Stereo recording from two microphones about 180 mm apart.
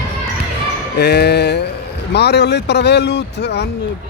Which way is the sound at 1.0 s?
65° left (ahead or behind).